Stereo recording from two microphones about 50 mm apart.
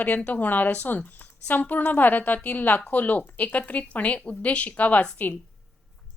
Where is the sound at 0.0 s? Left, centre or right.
Left.